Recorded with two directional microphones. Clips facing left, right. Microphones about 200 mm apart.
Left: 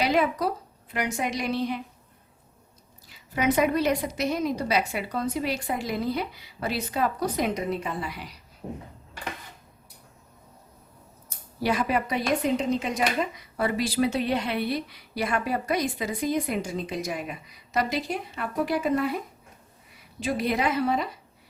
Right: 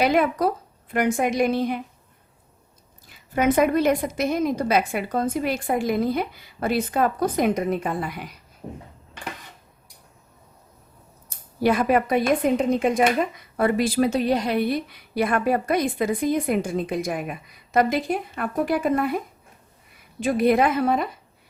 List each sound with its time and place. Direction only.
0.0 s speech: 55° right (ahead or behind)
3.1 s speech: 50° right (ahead or behind)
11.6 s speech: 50° right (ahead or behind)